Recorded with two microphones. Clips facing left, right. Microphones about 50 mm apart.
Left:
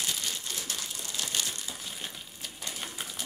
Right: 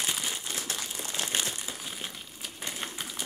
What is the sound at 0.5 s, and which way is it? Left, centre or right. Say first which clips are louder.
Crumpling: right 2 dB; right.